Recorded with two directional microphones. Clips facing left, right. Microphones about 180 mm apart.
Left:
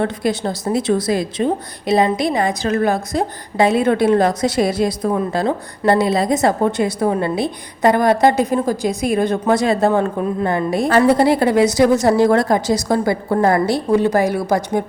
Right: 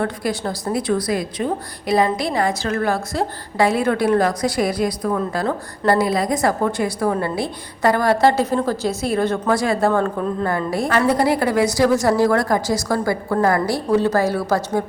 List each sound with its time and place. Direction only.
0.0 s a woman's voice: 20° left (ahead or behind)